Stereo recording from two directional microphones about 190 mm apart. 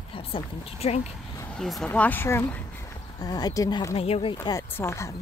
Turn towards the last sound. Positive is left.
turn(degrees=15)  # may be behind; listen again after turning